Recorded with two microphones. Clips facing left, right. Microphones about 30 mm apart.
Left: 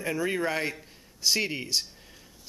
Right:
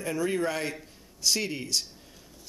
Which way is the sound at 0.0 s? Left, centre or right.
Centre.